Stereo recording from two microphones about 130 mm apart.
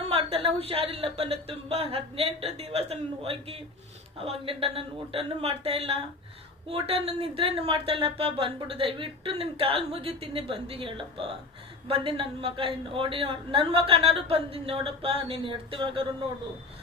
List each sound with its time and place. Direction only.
0.1 s a woman's voice: 45° right (ahead or behind)